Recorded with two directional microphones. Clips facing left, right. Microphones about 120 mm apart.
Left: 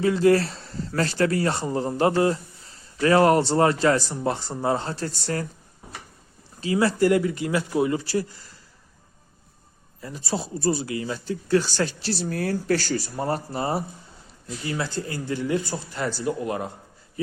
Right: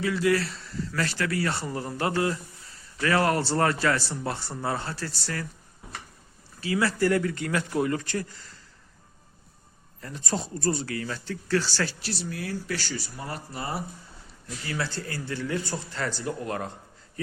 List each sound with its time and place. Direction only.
0.0 s speech: 35° left (ahead or behind)
6.6 s speech: 25° left (ahead or behind)
10.0 s speech: 5° left (ahead or behind); by 12.1 s 20° left (ahead or behind)
12.2 s speech: 45° left (ahead or behind)
14.7 s speech: 15° left (ahead or behind)